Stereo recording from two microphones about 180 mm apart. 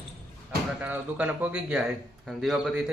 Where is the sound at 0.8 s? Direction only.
10° right (ahead or behind).